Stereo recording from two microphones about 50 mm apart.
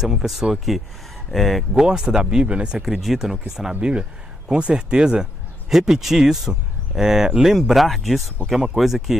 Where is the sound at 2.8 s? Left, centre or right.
Centre.